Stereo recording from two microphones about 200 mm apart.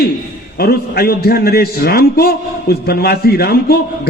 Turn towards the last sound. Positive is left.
turn(degrees=50)  # may be behind; listen again after turning